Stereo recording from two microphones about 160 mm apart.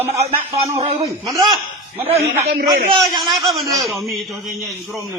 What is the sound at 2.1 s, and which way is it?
Speech, 40° right (ahead or behind).